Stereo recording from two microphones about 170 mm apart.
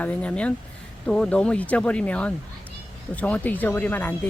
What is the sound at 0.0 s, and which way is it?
Speech, 10° left (ahead or behind).